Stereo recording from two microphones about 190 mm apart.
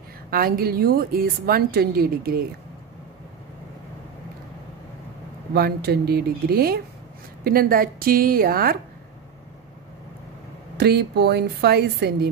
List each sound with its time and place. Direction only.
0.3 s a woman's voice: 50° right (ahead or behind)
5.5 s a woman's voice: 55° right (ahead or behind)
10.8 s a woman's voice: 60° right (ahead or behind)